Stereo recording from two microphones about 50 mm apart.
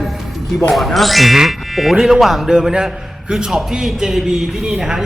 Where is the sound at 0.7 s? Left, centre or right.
Centre.